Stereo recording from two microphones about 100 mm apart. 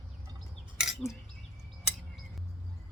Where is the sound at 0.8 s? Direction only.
5° right (ahead or behind).